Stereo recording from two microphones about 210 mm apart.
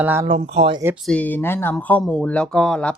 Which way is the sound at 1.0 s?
5° left (ahead or behind).